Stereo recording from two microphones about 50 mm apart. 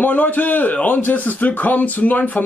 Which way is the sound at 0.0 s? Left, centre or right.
Left.